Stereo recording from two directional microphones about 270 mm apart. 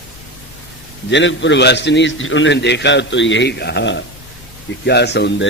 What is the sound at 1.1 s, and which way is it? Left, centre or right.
A man's voice, left.